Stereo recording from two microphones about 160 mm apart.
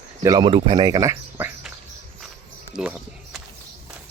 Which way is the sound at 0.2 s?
25° right (ahead or behind).